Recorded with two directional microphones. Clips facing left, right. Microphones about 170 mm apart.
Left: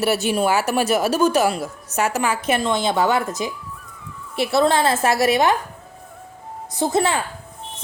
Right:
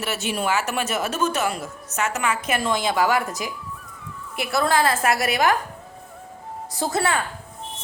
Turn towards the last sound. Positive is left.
turn(degrees=20)  # may be behind; listen again after turning